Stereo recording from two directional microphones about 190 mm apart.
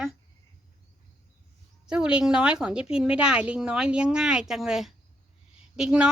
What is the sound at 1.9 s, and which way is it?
Speech, 5° right (ahead or behind).